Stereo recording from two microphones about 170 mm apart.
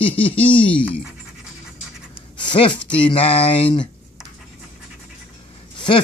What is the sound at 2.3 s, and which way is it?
Speech, 30° left (ahead or behind).